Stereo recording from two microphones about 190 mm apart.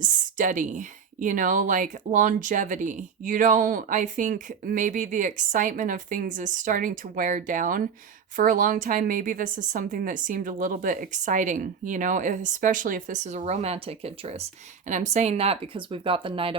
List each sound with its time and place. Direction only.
0.0 s speech: 40° right (ahead or behind)